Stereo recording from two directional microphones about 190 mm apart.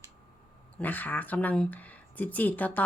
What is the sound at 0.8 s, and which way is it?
A woman's voice, 10° left (ahead or behind).